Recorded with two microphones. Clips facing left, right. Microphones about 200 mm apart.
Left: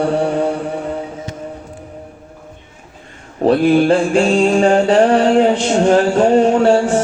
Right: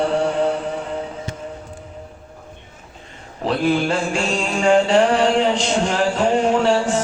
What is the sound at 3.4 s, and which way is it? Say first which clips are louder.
Music: left 8 dB; 40° left (ahead or behind).